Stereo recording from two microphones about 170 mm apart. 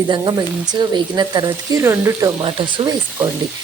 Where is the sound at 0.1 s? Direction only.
25° right (ahead or behind).